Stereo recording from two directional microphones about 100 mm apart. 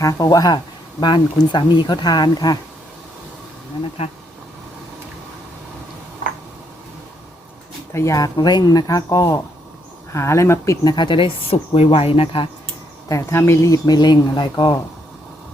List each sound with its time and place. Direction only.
0.0 s speech: 35° left (ahead or behind)
7.9 s speech: 35° left (ahead or behind)
10.8 s speech: 50° left (ahead or behind); by 12.5 s 65° left (ahead or behind)
13.1 s speech: 30° left (ahead or behind); by 14.8 s 45° left (ahead or behind)